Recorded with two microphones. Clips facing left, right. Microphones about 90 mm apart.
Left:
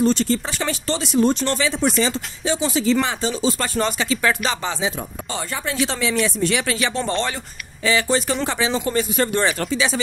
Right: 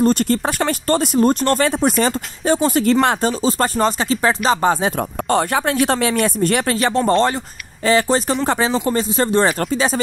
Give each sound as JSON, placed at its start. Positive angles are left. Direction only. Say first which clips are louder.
{"t": 0.0, "sound": "speech", "louder": "right 3 dB", "side_deg": -50}